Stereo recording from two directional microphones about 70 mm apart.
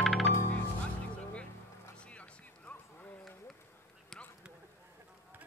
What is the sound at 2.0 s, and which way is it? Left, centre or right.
Music, centre.